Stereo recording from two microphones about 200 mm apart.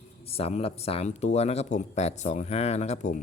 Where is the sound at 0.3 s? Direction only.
30° left (ahead or behind).